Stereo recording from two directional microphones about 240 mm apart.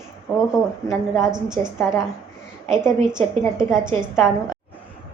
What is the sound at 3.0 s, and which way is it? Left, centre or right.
Speech, right.